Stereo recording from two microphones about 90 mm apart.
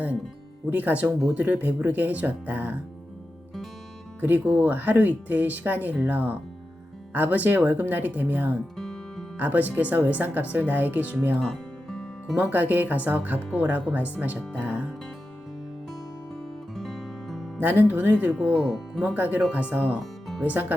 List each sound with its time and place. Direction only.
0.7 s speech: 20° right (ahead or behind)
4.2 s speech: 20° right (ahead or behind)
8.7 s music: 5° left (ahead or behind)
9.4 s speech: 20° right (ahead or behind)
11.3 s music: 5° left (ahead or behind)
12.5 s speech: 20° right (ahead or behind)
16.7 s music: centre (ahead or behind)
17.6 s speech: 20° right (ahead or behind)
18.5 s speech: centre (ahead or behind)
19.0 s speech: 20° right (ahead or behind)
20.0 s music: centre (ahead or behind)
20.4 s speech: 20° right (ahead or behind)